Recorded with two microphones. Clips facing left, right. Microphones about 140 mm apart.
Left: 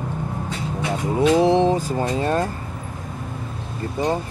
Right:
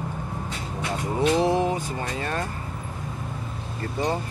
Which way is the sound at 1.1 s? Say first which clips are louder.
Left 5 dB; 20° left (ahead or behind).